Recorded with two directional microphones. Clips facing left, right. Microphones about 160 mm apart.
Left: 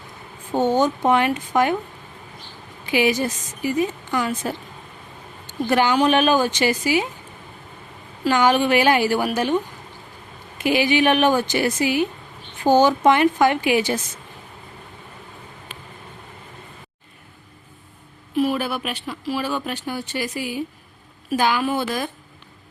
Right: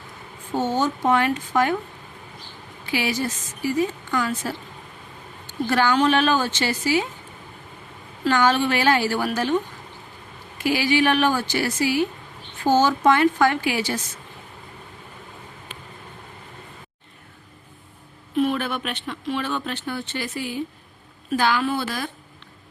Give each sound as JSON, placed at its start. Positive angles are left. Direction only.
{"t": 0.5, "sound": "speech", "side_deg": 15}
{"t": 2.8, "sound": "speech", "side_deg": 20}
{"t": 5.6, "sound": "speech", "side_deg": 20}
{"t": 8.2, "sound": "speech", "side_deg": 15}
{"t": 10.6, "sound": "speech", "side_deg": 20}
{"t": 18.3, "sound": "speech", "side_deg": 5}